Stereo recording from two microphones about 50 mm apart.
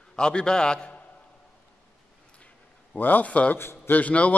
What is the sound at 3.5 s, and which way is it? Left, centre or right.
Speech, left.